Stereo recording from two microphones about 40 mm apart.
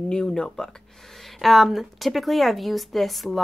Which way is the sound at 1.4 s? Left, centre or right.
Centre.